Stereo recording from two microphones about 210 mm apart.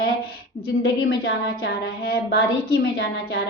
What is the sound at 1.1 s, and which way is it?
A woman's voice, 50° left (ahead or behind).